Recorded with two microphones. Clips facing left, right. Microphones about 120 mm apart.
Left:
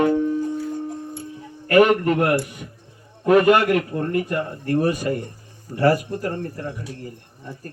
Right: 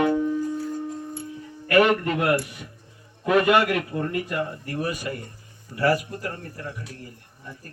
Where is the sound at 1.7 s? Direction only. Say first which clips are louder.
Left 4 dB; 15° left (ahead or behind).